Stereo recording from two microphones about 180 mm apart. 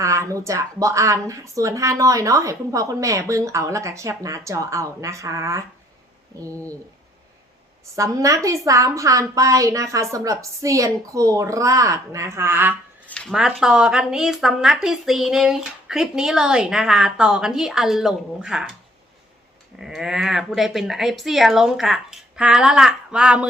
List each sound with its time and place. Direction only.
0.0 s speech: 15° right (ahead or behind)
7.9 s speech: 20° right (ahead or behind)
13.1 s speech: 5° left (ahead or behind)
19.8 s speech: 5° right (ahead or behind)